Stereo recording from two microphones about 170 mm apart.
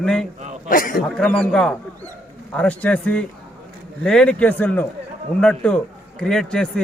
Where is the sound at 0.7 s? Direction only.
55° left (ahead or behind).